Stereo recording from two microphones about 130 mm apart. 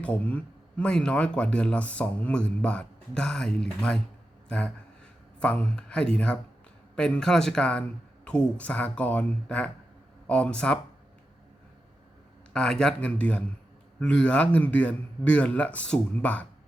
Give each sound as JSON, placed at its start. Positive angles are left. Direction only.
{"t": 0.0, "sound": "speech", "side_deg": 10}
{"t": 12.5, "sound": "speech", "side_deg": 5}